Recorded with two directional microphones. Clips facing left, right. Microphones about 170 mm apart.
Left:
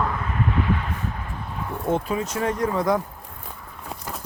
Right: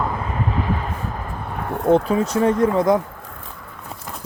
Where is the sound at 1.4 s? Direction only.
60° right (ahead or behind).